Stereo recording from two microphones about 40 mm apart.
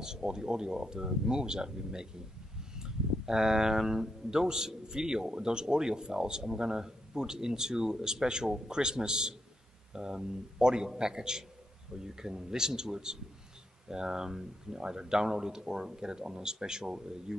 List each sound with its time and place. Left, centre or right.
0.0 s speech: centre